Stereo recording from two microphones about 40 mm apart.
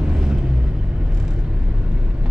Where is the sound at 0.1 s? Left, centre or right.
Centre.